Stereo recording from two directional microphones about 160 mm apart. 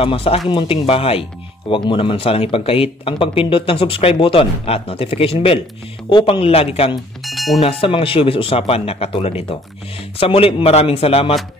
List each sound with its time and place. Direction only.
0.0 s speech: 35° left (ahead or behind)
7.2 s bell: centre (ahead or behind)
7.6 s speech: 35° left (ahead or behind)